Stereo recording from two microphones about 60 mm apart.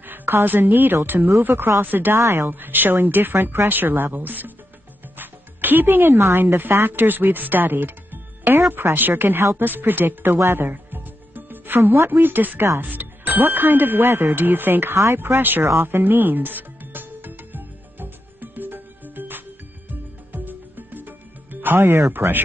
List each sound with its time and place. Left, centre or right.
0.0 s speech: right
15.8 s music: right